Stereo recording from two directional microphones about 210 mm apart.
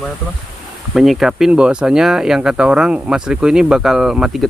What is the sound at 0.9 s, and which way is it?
Speech, centre (ahead or behind).